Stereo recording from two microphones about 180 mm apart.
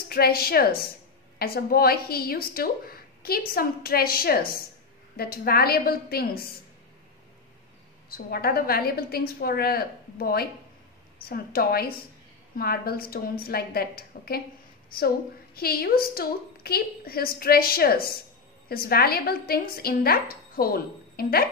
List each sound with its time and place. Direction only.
0.1 s a woman's voice: 55° left (ahead or behind)
8.1 s a woman's voice: 60° left (ahead or behind)